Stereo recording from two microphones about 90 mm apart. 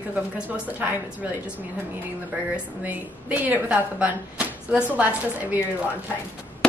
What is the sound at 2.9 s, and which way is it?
Speech, 15° right (ahead or behind).